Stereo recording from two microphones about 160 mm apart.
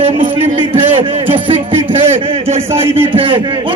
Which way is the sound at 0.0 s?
40° right (ahead or behind).